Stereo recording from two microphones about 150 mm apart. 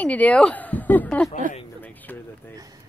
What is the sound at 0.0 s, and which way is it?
Speech, 10° left (ahead or behind).